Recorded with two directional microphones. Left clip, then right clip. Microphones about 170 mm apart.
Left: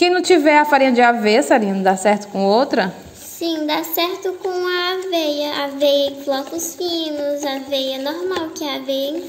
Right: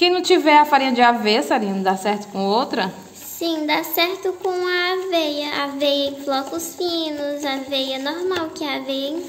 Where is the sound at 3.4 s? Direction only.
10° right (ahead or behind).